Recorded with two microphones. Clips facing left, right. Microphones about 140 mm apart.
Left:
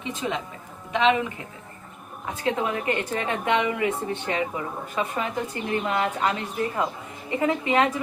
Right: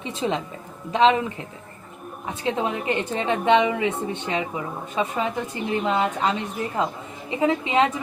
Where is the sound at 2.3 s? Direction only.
25° right (ahead or behind).